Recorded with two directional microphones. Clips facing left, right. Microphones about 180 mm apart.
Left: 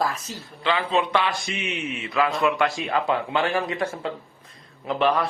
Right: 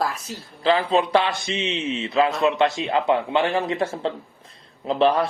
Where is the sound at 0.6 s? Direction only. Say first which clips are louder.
Right 4 dB; 35° right (ahead or behind).